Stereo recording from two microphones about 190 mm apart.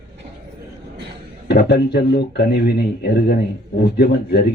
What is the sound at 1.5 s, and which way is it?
Speech, 55° left (ahead or behind).